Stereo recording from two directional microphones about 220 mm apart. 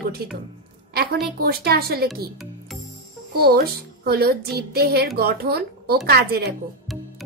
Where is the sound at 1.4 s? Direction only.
45° right (ahead or behind).